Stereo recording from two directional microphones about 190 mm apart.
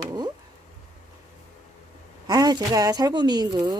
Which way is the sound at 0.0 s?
20° right (ahead or behind).